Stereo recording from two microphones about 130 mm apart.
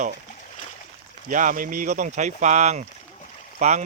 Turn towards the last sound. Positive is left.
turn(degrees=-65)  # may be behind; listen again after turning